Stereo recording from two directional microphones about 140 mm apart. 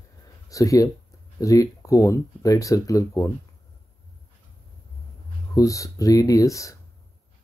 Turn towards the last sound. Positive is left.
turn(degrees=25)  # may be behind; listen again after turning